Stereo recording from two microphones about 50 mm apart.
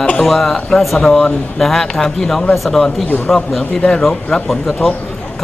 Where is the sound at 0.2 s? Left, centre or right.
Centre.